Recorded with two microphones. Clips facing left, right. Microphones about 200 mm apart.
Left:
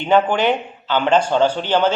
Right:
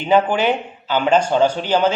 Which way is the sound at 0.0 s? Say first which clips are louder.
Even; 5° right (ahead or behind).